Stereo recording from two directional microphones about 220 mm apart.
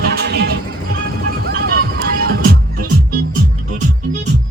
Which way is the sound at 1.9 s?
40° right (ahead or behind).